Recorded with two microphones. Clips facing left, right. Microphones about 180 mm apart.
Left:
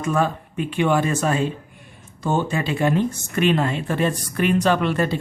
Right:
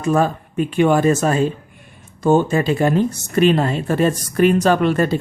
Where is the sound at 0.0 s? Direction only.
40° right (ahead or behind).